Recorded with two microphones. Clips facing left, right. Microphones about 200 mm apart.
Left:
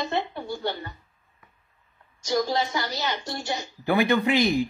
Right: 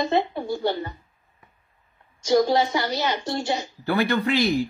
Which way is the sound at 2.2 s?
25° right (ahead or behind).